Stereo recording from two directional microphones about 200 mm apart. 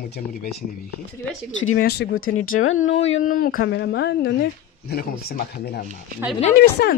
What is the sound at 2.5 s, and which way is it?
Speech, 90° left.